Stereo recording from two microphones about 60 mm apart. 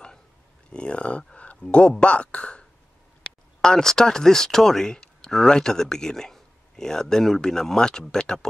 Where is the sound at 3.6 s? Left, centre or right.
Centre.